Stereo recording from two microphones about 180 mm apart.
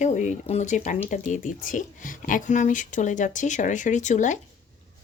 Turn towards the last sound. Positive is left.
turn(degrees=45)  # may be behind; listen again after turning